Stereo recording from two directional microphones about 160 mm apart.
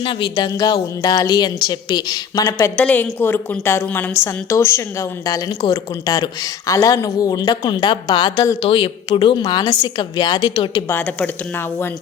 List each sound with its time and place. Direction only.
0.0 s a woman's voice: 30° left (ahead or behind)
10.8 s a woman's voice: 10° left (ahead or behind)